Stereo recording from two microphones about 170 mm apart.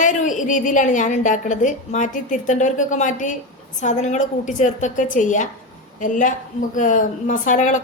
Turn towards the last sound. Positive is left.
turn(degrees=45)  # may be behind; listen again after turning